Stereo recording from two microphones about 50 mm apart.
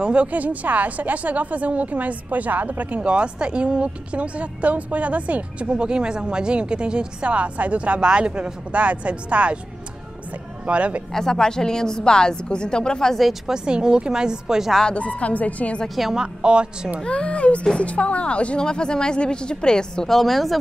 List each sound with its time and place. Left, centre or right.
0.0 s speech: right
3.0 s a woman's voice: right
10.7 s a woman's voice: right
11.1 s speech: centre
13.2 s a woman's voice: centre
13.7 s a woman's voice: centre
14.9 s a woman's voice: left
16.0 s a woman's voice: centre
16.4 s a woman's voice: centre
17.0 s a woman's voice: left
20.1 s a woman's voice: centre